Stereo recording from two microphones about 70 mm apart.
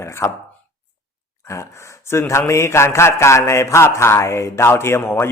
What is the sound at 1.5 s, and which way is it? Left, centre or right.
A man's voice, left.